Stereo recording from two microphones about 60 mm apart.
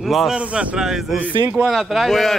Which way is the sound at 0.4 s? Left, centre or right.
Right.